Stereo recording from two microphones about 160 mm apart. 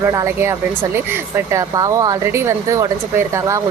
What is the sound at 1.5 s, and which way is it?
A woman's voice, 20° right (ahead or behind).